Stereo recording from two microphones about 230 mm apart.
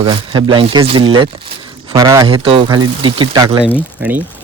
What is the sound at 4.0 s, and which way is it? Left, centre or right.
Speech, centre.